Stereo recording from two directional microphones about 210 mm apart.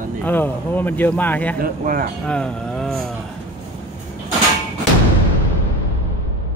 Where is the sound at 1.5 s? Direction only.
45° right (ahead or behind).